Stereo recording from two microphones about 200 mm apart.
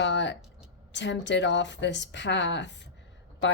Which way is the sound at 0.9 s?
60° left (ahead or behind).